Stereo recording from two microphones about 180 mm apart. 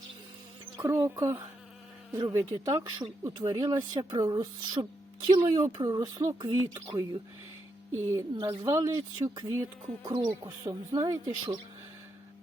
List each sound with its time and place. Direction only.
0.8 s speech: 15° right (ahead or behind)
7.9 s speech: 15° right (ahead or behind)